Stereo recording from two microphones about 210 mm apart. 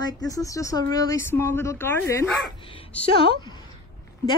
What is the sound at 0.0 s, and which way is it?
Speech, 15° left (ahead or behind).